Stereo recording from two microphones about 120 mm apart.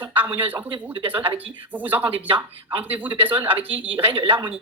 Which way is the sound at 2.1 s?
45° right (ahead or behind).